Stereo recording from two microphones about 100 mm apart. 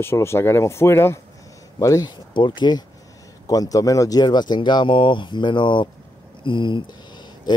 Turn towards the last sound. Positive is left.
turn(degrees=45)  # may be behind; listen again after turning